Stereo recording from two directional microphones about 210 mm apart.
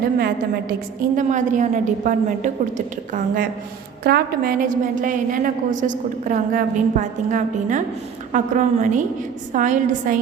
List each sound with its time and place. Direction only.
0.2 s a woman's voice: 45° right (ahead or behind)